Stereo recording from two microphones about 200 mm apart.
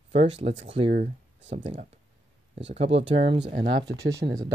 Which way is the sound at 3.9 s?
15° right (ahead or behind).